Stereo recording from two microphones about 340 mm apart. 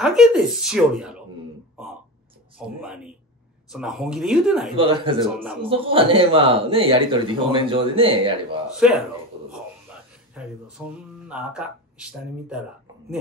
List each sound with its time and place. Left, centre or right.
0.0 s speech: centre
2.8 s speech: centre
4.7 s a man's voice: centre
8.7 s speech: centre
10.8 s speech: centre